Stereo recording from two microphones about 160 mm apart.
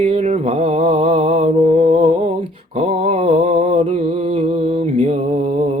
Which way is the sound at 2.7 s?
40° right (ahead or behind).